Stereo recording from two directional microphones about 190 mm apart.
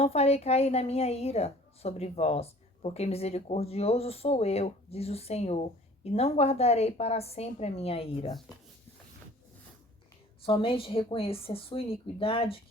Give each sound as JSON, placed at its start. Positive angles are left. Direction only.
{"t": 0.0, "sound": "a woman's voice", "side_deg": 35}
{"t": 10.4, "sound": "speech", "side_deg": 25}